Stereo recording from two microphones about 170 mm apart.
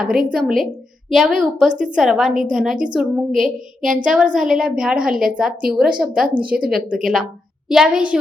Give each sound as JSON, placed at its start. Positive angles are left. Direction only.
{"t": 0.3, "sound": "a woman's voice", "side_deg": -5}
{"t": 1.7, "sound": "a woman's voice", "side_deg": -50}
{"t": 2.0, "sound": "a woman's voice", "side_deg": 0}